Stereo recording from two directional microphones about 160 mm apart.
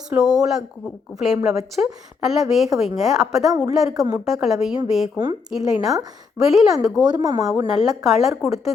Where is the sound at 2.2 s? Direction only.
Centre (ahead or behind).